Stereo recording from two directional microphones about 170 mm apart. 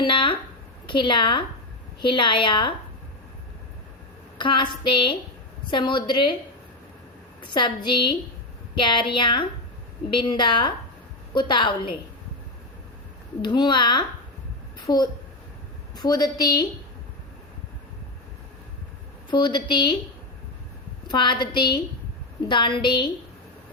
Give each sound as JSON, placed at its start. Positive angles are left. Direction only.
{"t": 0.0, "sound": "a sound", "side_deg": 30}
{"t": 0.9, "sound": "a woman's voice", "side_deg": 30}
{"t": 4.4, "sound": "a woman's voice", "side_deg": 30}
{"t": 7.4, "sound": "a woman's voice", "side_deg": 25}
{"t": 13.4, "sound": "a woman's voice", "side_deg": 25}
{"t": 19.3, "sound": "a woman's voice", "side_deg": 25}
{"t": 21.1, "sound": "a woman's voice", "side_deg": 25}